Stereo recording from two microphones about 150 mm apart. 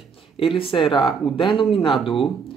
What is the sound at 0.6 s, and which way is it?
Speech, 35° left (ahead or behind).